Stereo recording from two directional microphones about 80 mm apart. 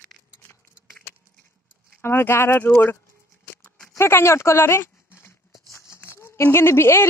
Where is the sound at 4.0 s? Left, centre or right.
Left.